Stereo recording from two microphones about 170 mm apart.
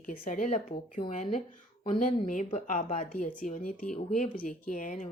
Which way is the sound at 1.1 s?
35° left (ahead or behind).